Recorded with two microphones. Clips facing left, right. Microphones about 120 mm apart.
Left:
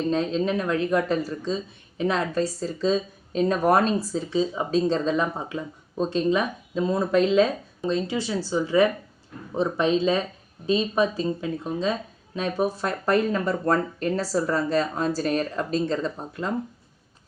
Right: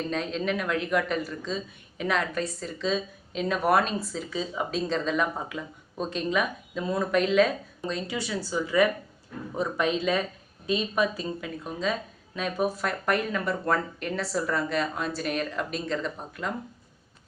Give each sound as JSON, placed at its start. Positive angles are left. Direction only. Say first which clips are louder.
{"t": 0.1, "sound": "speech", "louder": "left 5 dB", "side_deg": 30}